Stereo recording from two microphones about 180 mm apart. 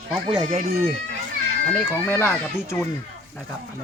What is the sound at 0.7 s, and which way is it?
Speech, 55° right (ahead or behind).